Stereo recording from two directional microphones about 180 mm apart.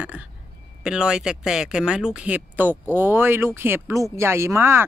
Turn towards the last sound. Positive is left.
turn(degrees=-15)  # may be behind; listen again after turning